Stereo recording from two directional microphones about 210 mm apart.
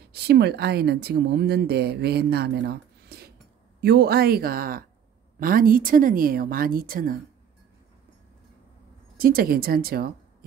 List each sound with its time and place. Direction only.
0.1 s speech: 50° right (ahead or behind)
9.2 s speech: 45° right (ahead or behind)